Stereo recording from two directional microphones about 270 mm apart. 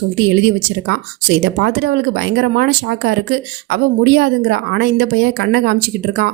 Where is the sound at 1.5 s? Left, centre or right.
Right.